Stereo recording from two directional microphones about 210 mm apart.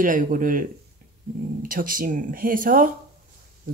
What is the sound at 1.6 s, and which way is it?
Speech, 40° right (ahead or behind).